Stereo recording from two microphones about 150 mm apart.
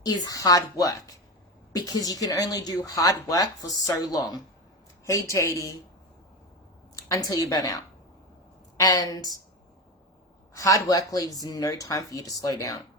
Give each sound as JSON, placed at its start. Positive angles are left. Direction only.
{"t": 0.0, "sound": "speech", "side_deg": 25}
{"t": 6.9, "sound": "a woman's voice", "side_deg": 20}
{"t": 8.8, "sound": "speech", "side_deg": 25}
{"t": 10.5, "sound": "speech", "side_deg": 20}